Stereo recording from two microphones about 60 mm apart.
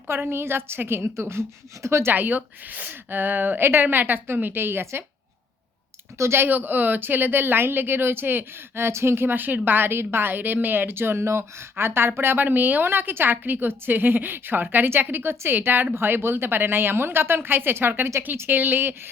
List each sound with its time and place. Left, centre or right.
0.1 s a woman's voice: right
2.1 s a woman's voice: right
6.1 s a woman's voice: right